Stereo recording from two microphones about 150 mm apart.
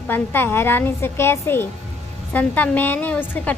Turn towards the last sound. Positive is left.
turn(degrees=10)  # may be behind; listen again after turning